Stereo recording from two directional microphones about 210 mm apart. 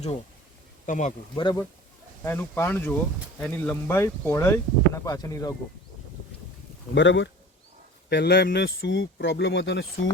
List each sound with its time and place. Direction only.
0.9 s speech: 35° left (ahead or behind)
1.4 s speech: 20° left (ahead or behind)
2.2 s speech: 10° left (ahead or behind)
6.9 s speech: 60° left (ahead or behind)